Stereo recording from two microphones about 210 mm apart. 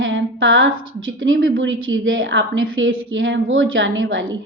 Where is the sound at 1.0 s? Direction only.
70° right (ahead or behind).